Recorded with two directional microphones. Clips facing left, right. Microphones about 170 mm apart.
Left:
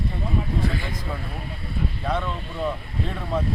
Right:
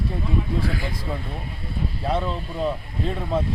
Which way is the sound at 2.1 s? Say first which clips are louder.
Right 4 dB; 30° right (ahead or behind).